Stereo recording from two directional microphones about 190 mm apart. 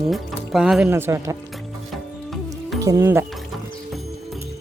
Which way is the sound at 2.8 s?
15° right (ahead or behind).